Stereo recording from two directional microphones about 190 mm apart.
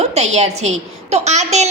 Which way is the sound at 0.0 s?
35° right (ahead or behind).